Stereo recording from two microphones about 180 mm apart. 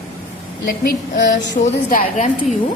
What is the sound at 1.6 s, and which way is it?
A woman's voice, 45° left (ahead or behind).